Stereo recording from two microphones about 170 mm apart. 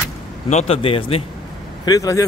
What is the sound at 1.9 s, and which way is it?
Speech, 20° left (ahead or behind).